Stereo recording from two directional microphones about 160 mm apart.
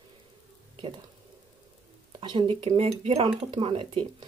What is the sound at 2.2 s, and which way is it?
Speech, 35° right (ahead or behind).